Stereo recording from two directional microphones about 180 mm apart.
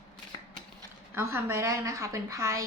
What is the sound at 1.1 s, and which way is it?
Speech, 15° right (ahead or behind).